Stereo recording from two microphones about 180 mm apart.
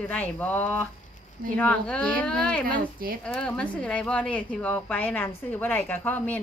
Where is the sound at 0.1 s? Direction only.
10° left (ahead or behind).